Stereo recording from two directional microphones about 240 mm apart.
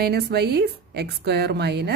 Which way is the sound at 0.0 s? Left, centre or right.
Right.